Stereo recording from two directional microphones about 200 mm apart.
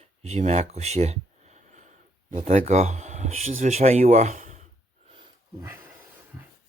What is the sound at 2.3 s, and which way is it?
Speech, 35° right (ahead or behind).